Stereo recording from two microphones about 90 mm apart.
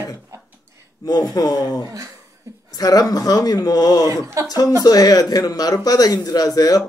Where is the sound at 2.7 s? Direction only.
45° left (ahead or behind).